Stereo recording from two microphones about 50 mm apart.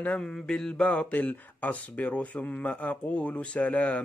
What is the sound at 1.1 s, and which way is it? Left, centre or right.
A man's voice, left.